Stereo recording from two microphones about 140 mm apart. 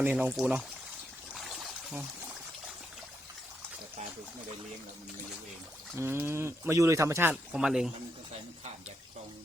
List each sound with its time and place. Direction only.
0.0 s speech: 10° right (ahead or behind)
1.3 s a sound: centre (ahead or behind)
6.0 s speech: 15° right (ahead or behind)
7.6 s speech: 5° right (ahead or behind)